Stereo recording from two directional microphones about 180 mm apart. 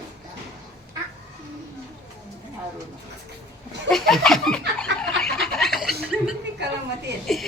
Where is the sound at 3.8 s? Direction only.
Centre (ahead or behind).